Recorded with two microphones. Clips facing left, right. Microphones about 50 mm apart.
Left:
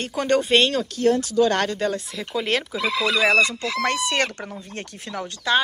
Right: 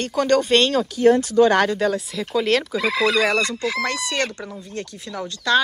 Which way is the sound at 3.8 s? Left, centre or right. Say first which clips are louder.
Left 1 dB; left.